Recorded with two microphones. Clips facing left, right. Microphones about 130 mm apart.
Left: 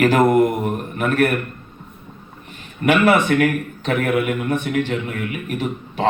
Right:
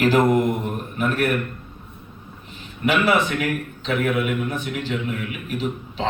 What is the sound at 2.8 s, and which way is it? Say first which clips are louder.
Speech: left 4 dB; 55° left (ahead or behind).